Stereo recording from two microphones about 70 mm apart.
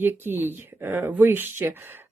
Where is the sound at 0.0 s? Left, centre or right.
Right.